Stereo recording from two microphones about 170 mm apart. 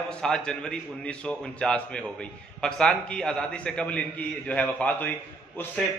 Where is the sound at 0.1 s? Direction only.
5° left (ahead or behind).